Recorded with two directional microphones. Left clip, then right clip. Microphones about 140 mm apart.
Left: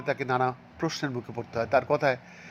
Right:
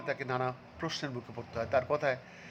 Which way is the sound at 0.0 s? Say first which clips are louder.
Left 7 dB; 25° left (ahead or behind).